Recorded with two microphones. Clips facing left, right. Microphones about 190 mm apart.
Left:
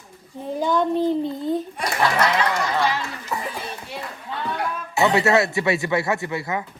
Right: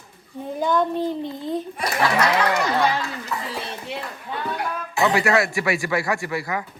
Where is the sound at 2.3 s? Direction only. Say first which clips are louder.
Right 2 dB; 60° right (ahead or behind).